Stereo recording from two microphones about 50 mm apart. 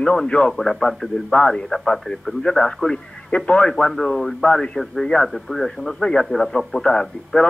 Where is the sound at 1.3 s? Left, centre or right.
Left.